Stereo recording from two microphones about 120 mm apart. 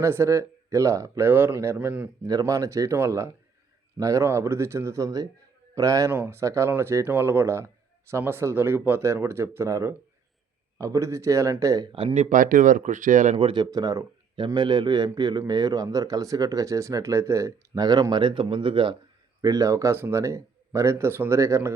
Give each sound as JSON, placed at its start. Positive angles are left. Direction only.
{"t": 0.0, "sound": "speech", "side_deg": -25}
{"t": 2.2, "sound": "speech", "side_deg": -30}
{"t": 11.9, "sound": "speech", "side_deg": -50}
{"t": 13.3, "sound": "speech", "side_deg": -45}
{"t": 13.7, "sound": "a man's voice", "side_deg": -30}
{"t": 19.4, "sound": "speech", "side_deg": -30}